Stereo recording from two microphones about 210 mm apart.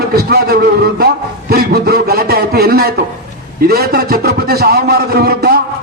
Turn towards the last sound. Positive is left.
turn(degrees=-45)  # may be behind; listen again after turning